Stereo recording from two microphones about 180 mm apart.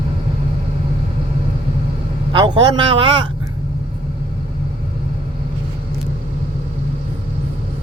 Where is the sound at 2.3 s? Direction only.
25° right (ahead or behind).